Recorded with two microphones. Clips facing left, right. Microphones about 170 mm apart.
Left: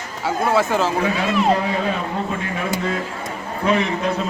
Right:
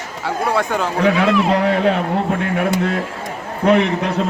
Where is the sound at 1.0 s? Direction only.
70° right (ahead or behind).